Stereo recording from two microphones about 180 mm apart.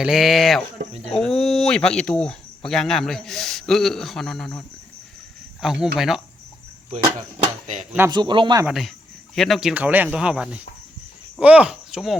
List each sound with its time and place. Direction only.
0.0 s a man's voice: centre (ahead or behind)
0.8 s speech: 35° right (ahead or behind)
1.1 s a man's voice: 5° left (ahead or behind)
5.6 s a man's voice: centre (ahead or behind)
7.8 s speech: 10° right (ahead or behind)
8.1 s speech: 25° right (ahead or behind)
8.6 s a man's voice: centre (ahead or behind)